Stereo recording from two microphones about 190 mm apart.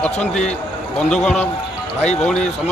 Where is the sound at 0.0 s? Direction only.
5° left (ahead or behind).